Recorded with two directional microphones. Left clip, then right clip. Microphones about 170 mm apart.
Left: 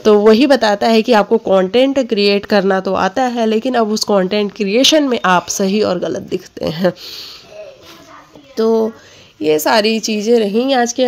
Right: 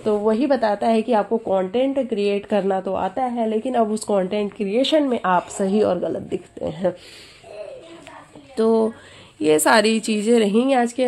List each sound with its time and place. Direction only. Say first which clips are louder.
0.0 s a woman's voice: left 11 dB; 50° left (ahead or behind); by 6.7 s 20° left (ahead or behind)
6.7 s speech: left 7 dB; 30° left (ahead or behind)
8.5 s speech: left 4 dB; 15° left (ahead or behind)
9.4 s a woman's voice: left 3 dB; centre (ahead or behind); by 11.1 s 15° left (ahead or behind)